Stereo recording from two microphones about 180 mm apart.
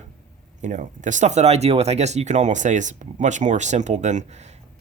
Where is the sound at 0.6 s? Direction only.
45° right (ahead or behind).